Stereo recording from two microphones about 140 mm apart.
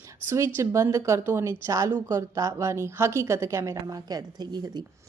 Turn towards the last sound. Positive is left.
turn(degrees=-30)  # may be behind; listen again after turning